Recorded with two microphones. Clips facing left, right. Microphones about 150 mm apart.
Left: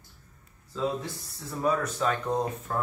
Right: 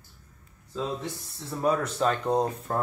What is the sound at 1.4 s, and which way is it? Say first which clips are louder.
Speech: right 1 dB; 25° right (ahead or behind).